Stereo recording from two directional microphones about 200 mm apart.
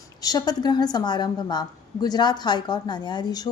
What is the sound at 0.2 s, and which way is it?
A woman's voice, 20° left (ahead or behind).